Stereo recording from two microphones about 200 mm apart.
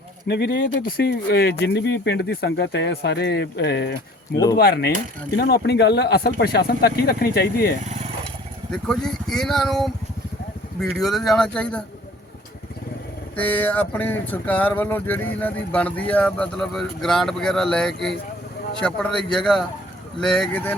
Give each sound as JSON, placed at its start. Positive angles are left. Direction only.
{"t": 0.3, "sound": "speech", "side_deg": 55}
{"t": 8.7, "sound": "speech", "side_deg": 5}
{"t": 13.3, "sound": "speech", "side_deg": 10}